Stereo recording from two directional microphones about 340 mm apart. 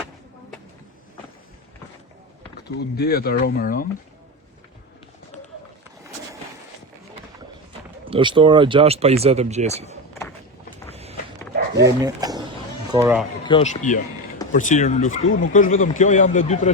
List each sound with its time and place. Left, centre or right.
2.6 s speech: left
8.1 s speech: centre
10.9 s a sound: centre
11.8 s speech: centre
13.4 s speech: centre